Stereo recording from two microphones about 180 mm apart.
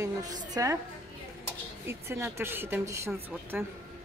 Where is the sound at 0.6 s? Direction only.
15° right (ahead or behind).